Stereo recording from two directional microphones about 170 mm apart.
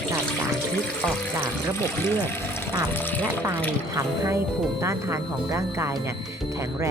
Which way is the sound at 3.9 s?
20° right (ahead or behind).